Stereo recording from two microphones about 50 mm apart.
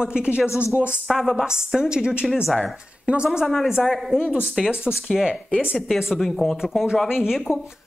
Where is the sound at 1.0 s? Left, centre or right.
Centre.